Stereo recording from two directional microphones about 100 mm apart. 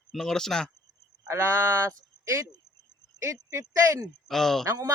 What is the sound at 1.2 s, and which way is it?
Speech, 25° right (ahead or behind).